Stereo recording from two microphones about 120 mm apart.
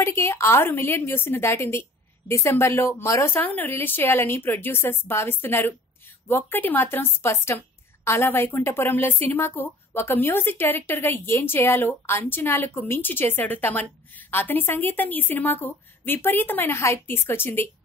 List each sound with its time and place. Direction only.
0.0 s a woman's voice: 20° left (ahead or behind)